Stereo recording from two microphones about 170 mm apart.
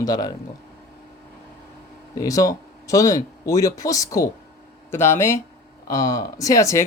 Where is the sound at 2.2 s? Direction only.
20° left (ahead or behind).